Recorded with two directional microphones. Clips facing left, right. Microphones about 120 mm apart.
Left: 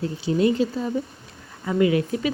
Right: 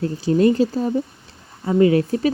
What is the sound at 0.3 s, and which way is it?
Speech, 45° right (ahead or behind).